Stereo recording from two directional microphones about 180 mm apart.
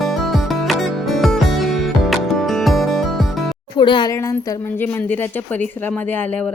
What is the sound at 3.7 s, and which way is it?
Music, 25° left (ahead or behind).